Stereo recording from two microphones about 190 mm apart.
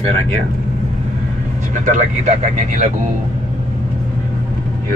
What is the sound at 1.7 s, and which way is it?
Speech, 40° right (ahead or behind).